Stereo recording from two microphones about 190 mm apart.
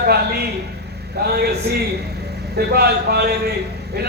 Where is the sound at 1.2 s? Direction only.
55° right (ahead or behind).